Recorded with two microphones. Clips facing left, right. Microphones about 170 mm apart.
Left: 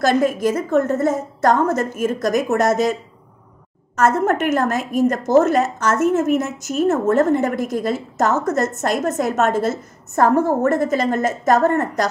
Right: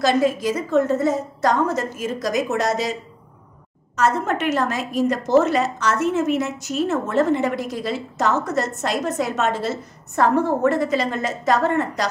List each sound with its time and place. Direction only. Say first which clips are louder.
0.0 s a woman's voice: left 2 dB; 50° left (ahead or behind)